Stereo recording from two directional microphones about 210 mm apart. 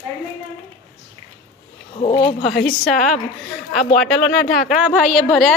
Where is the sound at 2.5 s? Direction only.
45° left (ahead or behind).